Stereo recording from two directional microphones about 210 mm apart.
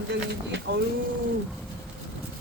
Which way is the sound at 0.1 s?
55° right (ahead or behind).